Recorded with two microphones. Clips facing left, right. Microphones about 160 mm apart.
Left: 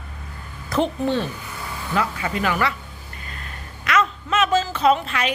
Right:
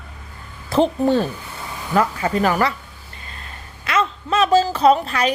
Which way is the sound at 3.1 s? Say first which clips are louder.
Even; 30° right (ahead or behind).